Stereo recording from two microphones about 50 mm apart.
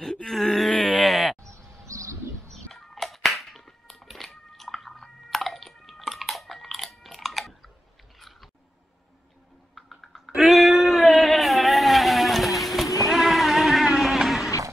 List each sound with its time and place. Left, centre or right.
0.0 s groan: centre
1.4 s sheep: right
1.9 s bird: right
2.5 s music: centre
8.2 s biting: centre
9.8 s a sound: centre